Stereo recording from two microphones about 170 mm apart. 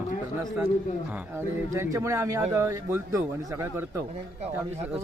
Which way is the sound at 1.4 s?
15° right (ahead or behind).